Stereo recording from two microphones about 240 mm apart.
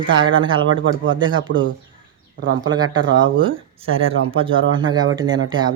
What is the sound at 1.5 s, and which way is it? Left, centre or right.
Speech, right.